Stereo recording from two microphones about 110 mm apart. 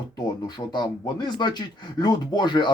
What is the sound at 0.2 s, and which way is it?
Speech, 40° left (ahead or behind).